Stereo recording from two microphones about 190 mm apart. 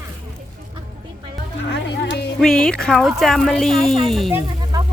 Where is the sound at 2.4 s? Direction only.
5° left (ahead or behind).